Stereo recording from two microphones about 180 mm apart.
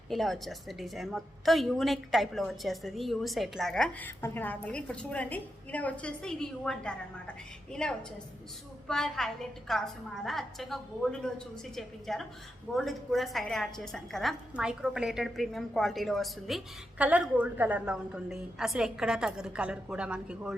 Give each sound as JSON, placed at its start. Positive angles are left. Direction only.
{"t": 0.1, "sound": "a woman's voice", "side_deg": 0}